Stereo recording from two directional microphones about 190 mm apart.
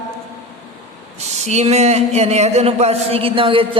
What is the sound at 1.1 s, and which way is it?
Speech, 35° right (ahead or behind).